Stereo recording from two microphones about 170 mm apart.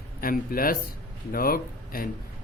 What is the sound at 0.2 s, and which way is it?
Speech, 55° left (ahead or behind).